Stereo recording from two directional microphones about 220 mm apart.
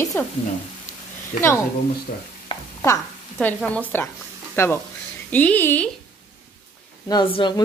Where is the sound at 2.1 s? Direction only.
40° left (ahead or behind).